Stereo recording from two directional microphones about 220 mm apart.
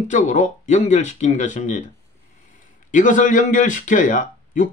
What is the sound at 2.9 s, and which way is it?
Speech, 35° left (ahead or behind).